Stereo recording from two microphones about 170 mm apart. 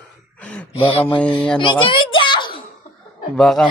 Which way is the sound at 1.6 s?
30° left (ahead or behind).